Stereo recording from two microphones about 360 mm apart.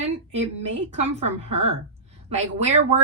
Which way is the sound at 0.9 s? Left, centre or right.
Centre.